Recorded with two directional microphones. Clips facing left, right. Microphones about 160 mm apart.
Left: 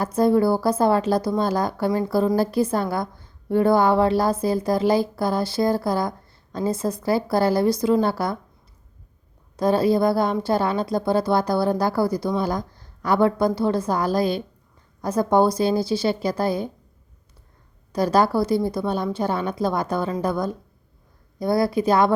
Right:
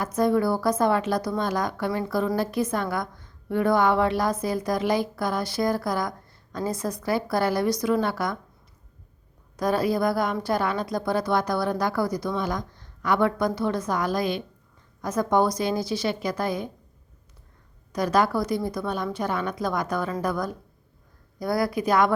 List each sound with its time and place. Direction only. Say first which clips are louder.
0.0 s speech: left 4 dB; 30° left (ahead or behind)
9.6 s speech: left 5 dB; 25° left (ahead or behind)
17.9 s speech: left 3 dB; 30° left (ahead or behind)